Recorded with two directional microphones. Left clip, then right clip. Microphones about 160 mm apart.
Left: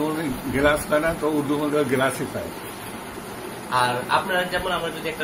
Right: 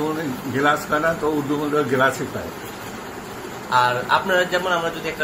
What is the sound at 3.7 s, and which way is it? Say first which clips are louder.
Speech: right 3 dB; 45° right (ahead or behind).